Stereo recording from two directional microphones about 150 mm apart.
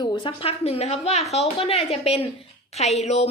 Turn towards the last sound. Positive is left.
turn(degrees=45)  # may be behind; listen again after turning